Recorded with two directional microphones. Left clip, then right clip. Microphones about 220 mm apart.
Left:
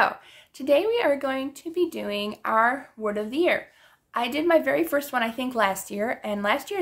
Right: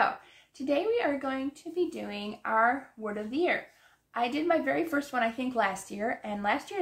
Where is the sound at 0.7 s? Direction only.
45° left (ahead or behind).